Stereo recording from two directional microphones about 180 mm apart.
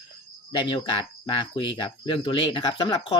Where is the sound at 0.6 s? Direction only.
25° left (ahead or behind).